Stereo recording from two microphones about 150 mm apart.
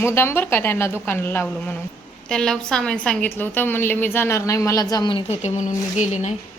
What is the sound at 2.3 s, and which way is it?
A woman's voice, 5° left (ahead or behind).